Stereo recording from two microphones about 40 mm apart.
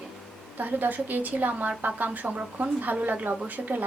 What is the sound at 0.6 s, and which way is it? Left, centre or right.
A woman's voice, right.